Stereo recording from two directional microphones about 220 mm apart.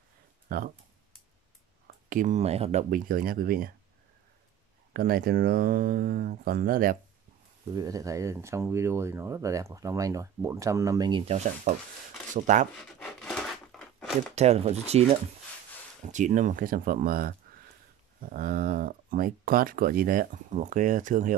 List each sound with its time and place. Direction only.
0.5 s speech: 40° right (ahead or behind)
2.0 s speech: 35° right (ahead or behind)
4.9 s speech: 40° right (ahead or behind)
7.7 s speech: 15° right (ahead or behind); by 12.6 s 35° right (ahead or behind)
13.0 s a sound: 5° left (ahead or behind)
14.3 s speech: 30° right (ahead or behind)